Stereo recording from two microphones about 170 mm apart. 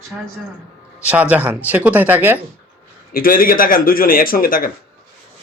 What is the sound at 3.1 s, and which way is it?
Speech, 55° left (ahead or behind).